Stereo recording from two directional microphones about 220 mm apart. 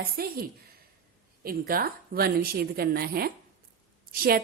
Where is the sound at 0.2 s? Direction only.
45° right (ahead or behind).